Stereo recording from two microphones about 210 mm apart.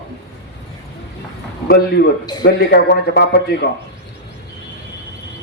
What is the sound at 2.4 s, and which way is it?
Speech, 50° left (ahead or behind).